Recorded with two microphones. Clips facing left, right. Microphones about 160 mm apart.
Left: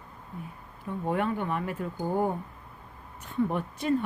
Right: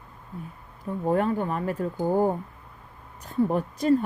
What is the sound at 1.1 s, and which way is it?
Speech, 40° right (ahead or behind).